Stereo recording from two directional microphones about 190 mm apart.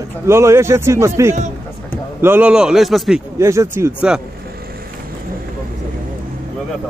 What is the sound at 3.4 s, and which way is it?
Speech, 15° right (ahead or behind).